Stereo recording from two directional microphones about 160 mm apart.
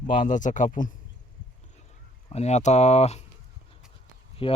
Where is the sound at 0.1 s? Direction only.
50° left (ahead or behind).